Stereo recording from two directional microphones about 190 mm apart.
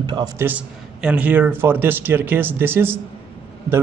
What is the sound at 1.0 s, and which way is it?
A man's voice, 5° right (ahead or behind).